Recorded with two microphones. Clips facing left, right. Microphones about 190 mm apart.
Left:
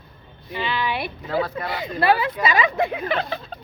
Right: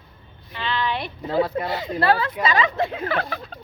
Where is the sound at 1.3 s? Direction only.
25° right (ahead or behind).